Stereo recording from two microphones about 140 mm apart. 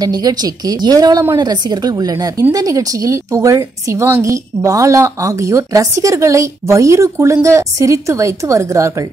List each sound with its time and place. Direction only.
0.0 s a woman's voice: 30° right (ahead or behind)